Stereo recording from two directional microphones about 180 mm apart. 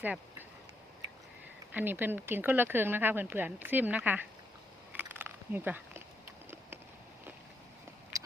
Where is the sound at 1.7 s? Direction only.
10° right (ahead or behind).